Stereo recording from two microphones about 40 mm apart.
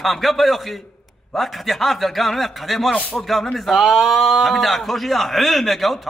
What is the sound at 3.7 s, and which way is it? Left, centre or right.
A man's voice, centre.